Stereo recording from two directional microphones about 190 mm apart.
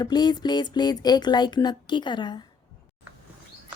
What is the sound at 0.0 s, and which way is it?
Speech, 20° left (ahead or behind).